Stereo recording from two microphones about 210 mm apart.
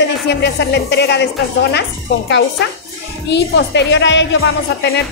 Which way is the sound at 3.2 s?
55° left (ahead or behind).